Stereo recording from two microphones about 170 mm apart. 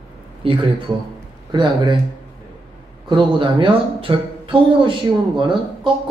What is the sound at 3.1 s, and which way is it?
Speech, 30° right (ahead or behind).